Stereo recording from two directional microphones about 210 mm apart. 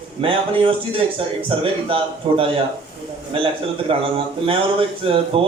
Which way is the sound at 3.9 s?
25° right (ahead or behind).